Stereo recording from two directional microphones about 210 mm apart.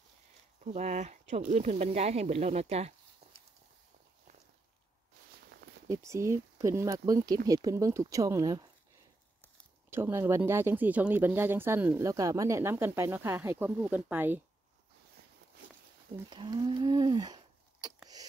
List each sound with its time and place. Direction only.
0.7 s speech: 35° right (ahead or behind)
5.9 s speech: 15° right (ahead or behind)
9.8 s speech: 10° right (ahead or behind)
16.3 s speech: 20° right (ahead or behind)